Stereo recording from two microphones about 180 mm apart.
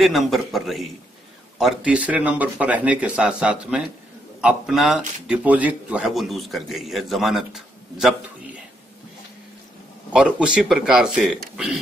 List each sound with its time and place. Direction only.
0.0 s a man's voice: centre (ahead or behind)
10.1 s a man's voice: 5° right (ahead or behind)